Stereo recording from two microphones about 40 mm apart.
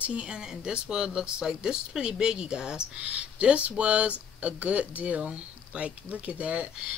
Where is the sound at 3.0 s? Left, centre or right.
Right.